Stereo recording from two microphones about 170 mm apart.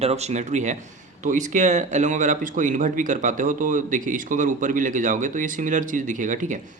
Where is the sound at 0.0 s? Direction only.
40° right (ahead or behind).